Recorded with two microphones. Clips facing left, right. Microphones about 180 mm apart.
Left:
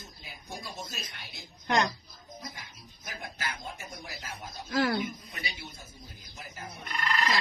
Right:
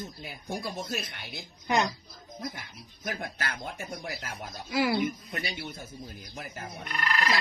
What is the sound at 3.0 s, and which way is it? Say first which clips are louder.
Speech: right 5 dB; 60° right (ahead or behind).